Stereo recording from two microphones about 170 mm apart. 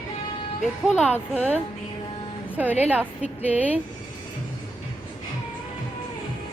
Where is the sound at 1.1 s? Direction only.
10° left (ahead or behind).